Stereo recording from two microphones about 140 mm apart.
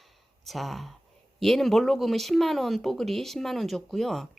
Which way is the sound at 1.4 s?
Centre (ahead or behind).